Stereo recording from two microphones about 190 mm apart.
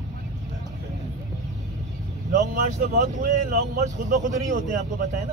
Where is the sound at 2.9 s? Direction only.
40° right (ahead or behind).